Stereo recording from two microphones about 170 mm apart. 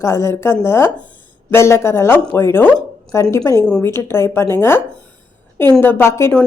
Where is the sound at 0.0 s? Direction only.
15° left (ahead or behind).